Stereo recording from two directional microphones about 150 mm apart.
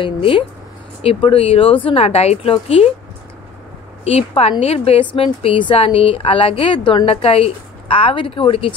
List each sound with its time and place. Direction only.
0.0 s speech: 35° left (ahead or behind)
4.0 s a woman's voice: 40° left (ahead or behind)